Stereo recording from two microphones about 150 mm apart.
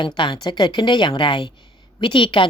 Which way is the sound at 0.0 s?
30° left (ahead or behind).